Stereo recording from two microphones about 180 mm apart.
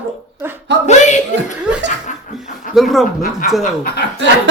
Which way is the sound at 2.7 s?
Centre (ahead or behind).